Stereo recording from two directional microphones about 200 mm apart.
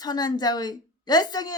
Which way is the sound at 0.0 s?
20° left (ahead or behind).